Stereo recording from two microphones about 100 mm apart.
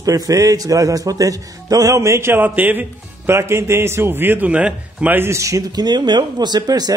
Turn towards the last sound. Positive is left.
turn(degrees=-40)  # may be behind; listen again after turning